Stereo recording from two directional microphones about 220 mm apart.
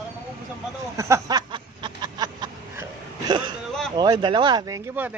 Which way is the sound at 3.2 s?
20° right (ahead or behind).